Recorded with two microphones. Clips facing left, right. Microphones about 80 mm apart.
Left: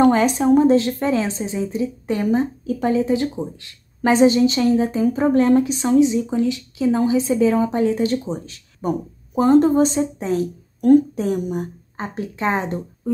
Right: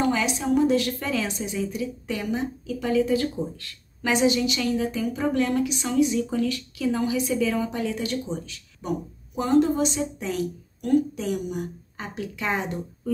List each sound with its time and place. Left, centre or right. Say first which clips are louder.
0.0 s a woman's voice: left 9 dB; left
4.0 s a woman's voice: left 8 dB; left